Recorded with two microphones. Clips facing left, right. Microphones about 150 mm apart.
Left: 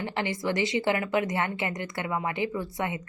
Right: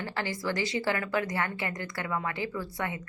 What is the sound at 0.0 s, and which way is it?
A woman's voice, 20° left (ahead or behind).